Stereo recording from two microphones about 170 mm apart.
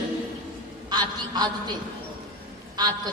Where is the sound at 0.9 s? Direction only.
25° right (ahead or behind).